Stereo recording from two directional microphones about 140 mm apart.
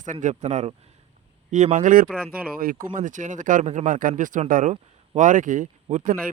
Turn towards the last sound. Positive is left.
turn(degrees=-65)  # may be behind; listen again after turning